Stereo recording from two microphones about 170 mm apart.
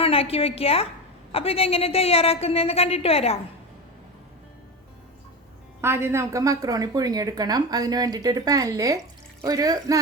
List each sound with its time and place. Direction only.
0.0 s a woman's voice: 35° left (ahead or behind)
5.8 s a woman's voice: 15° right (ahead or behind)